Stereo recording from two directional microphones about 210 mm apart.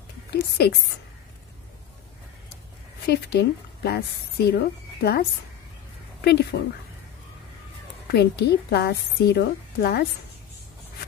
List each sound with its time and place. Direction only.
0.3 s a woman's voice: 50° left (ahead or behind)
3.1 s a woman's voice: 50° left (ahead or behind)
6.5 s a woman's voice: 50° left (ahead or behind)
8.1 s a woman's voice: 50° left (ahead or behind)